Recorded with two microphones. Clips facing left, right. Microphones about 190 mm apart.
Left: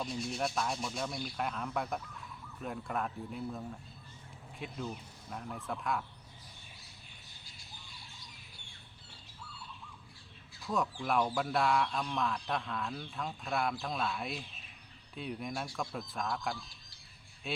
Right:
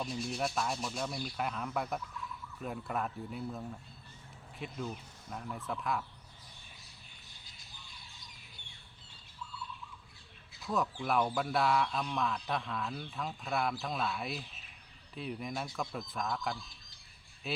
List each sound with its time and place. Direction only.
0.0 s speech: centre (ahead or behind)
11.0 s speech: centre (ahead or behind)